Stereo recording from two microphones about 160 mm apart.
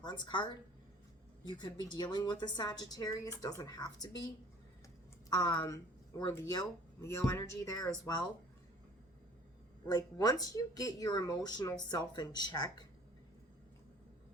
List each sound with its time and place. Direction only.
0.0 s a woman's voice: 25° left (ahead or behind)
5.3 s a woman's voice: 25° left (ahead or behind)
9.8 s a woman's voice: 25° left (ahead or behind)